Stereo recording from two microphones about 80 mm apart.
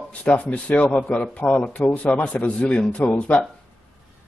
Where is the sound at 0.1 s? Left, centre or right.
Centre.